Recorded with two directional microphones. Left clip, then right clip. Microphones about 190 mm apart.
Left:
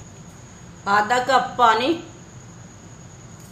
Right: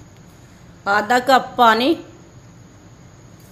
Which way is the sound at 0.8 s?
55° right (ahead or behind).